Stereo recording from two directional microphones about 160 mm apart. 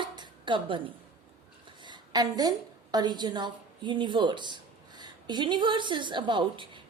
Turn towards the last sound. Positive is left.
turn(degrees=-30)  # may be behind; listen again after turning